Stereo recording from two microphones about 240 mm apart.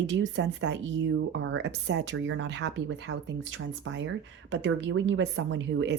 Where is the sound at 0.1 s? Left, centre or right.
Right.